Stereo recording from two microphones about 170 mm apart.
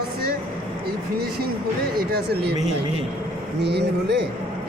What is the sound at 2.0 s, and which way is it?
Speech, 70° right (ahead or behind).